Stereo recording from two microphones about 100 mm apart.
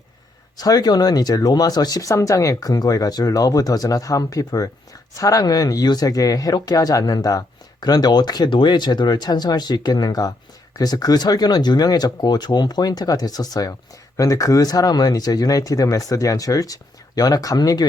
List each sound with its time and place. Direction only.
0.5 s speech: 40° left (ahead or behind)